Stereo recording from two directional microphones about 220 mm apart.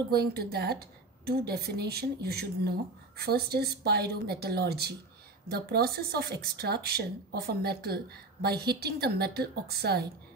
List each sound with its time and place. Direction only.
0.1 s speech: 45° right (ahead or behind)